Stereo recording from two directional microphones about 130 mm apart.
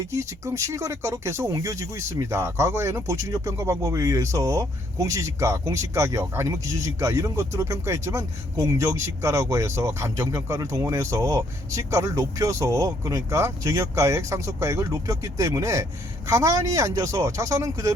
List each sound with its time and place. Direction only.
0.1 s speech: 25° right (ahead or behind)